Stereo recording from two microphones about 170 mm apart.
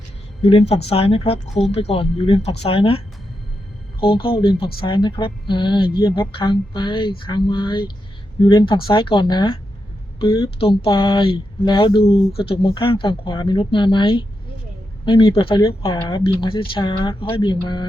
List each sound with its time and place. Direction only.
0.4 s speech: 35° left (ahead or behind)
4.0 s speech: 30° left (ahead or behind)